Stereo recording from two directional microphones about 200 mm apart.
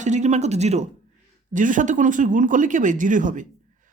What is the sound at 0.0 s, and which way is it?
Speech, 35° right (ahead or behind).